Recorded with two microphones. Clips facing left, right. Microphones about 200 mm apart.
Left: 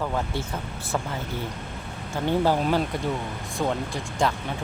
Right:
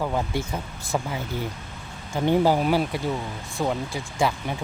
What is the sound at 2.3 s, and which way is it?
Speech, 10° right (ahead or behind).